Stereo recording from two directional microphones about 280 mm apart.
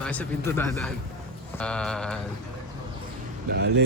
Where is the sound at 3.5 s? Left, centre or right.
Right.